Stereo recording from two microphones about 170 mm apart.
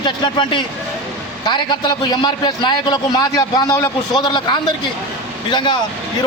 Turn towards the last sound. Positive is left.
turn(degrees=25)  # may be behind; listen again after turning